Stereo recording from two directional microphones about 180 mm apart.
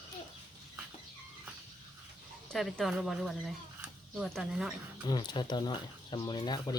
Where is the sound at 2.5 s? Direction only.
Centre (ahead or behind).